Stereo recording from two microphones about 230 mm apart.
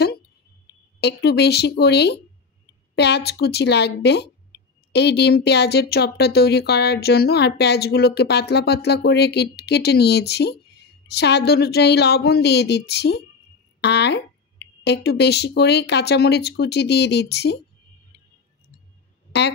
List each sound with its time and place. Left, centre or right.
1.0 s speech: left